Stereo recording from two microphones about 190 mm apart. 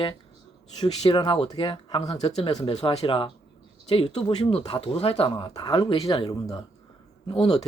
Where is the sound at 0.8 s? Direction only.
25° left (ahead or behind).